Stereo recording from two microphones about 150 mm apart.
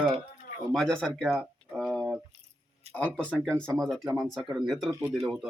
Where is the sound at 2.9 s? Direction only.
10° left (ahead or behind).